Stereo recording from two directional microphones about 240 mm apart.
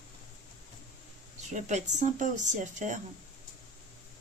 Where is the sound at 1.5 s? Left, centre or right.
Right.